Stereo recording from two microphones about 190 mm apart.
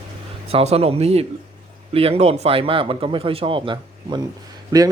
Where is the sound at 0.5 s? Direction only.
35° right (ahead or behind).